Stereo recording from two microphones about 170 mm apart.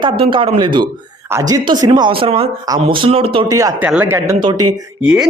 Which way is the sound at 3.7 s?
10° right (ahead or behind).